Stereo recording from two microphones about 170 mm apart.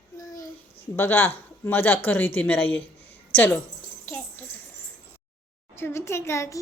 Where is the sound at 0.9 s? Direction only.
15° left (ahead or behind).